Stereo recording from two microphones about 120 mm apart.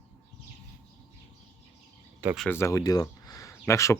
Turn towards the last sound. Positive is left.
turn(degrees=25)  # may be behind; listen again after turning